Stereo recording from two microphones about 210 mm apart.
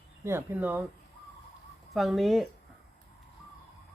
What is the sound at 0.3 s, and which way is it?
Speech, 10° right (ahead or behind).